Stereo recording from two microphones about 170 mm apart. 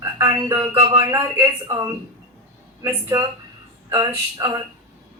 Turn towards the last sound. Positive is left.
turn(degrees=-20)  # may be behind; listen again after turning